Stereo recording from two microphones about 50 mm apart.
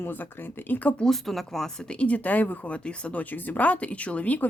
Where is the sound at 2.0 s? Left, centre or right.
Left.